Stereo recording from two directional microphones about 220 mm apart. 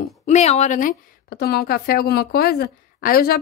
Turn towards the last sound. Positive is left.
turn(degrees=45)  # may be behind; listen again after turning